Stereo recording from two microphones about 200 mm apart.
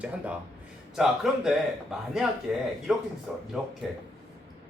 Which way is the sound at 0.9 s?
Centre (ahead or behind).